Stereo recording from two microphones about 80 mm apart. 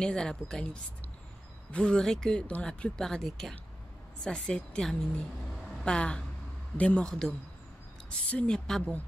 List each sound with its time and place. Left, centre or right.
0.0 s speech: centre
7.1 s speech: centre